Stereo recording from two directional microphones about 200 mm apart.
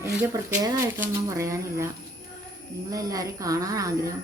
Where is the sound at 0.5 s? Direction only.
15° right (ahead or behind).